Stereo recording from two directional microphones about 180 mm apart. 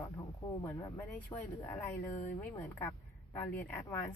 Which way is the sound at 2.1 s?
45° left (ahead or behind).